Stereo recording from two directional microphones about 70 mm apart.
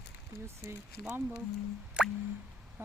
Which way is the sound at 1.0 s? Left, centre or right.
Right.